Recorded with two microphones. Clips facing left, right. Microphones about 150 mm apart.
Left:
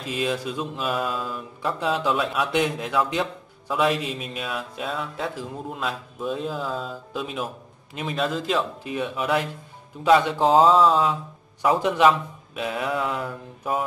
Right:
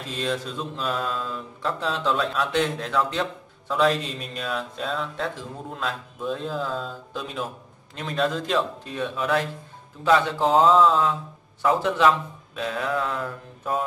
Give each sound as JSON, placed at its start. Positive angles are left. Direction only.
{"t": 0.0, "sound": "speech", "side_deg": 10}